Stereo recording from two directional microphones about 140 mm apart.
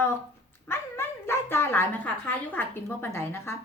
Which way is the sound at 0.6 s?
15° left (ahead or behind).